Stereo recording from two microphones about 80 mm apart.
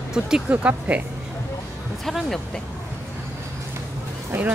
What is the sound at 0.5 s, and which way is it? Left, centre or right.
Speech, centre.